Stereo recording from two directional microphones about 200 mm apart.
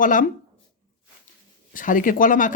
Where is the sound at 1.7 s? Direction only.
40° left (ahead or behind).